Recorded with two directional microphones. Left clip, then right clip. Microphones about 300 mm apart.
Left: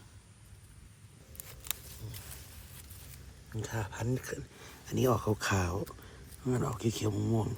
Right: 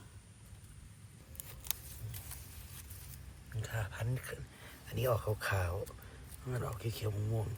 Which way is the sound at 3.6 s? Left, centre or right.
Centre.